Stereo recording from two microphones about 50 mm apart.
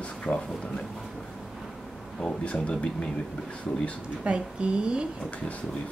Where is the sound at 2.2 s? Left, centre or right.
Left.